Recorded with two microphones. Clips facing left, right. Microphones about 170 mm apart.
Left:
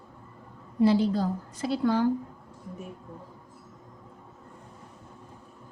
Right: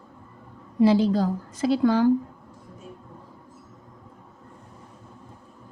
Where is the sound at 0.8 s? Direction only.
90° right.